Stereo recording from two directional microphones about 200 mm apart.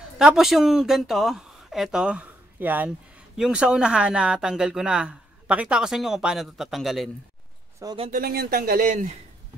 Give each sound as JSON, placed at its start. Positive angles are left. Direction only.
{"t": 0.2, "sound": "speech", "side_deg": 0}
{"t": 7.8, "sound": "speech", "side_deg": -25}
{"t": 8.1, "sound": "speech", "side_deg": -50}